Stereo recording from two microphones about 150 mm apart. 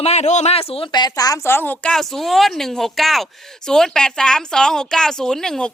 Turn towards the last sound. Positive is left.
turn(degrees=5)  # may be behind; listen again after turning